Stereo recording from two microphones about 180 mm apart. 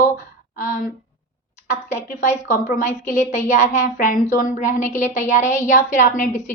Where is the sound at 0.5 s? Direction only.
50° left (ahead or behind).